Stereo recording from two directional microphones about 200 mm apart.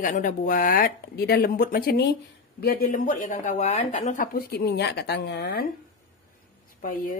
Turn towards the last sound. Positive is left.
turn(degrees=45)  # may be behind; listen again after turning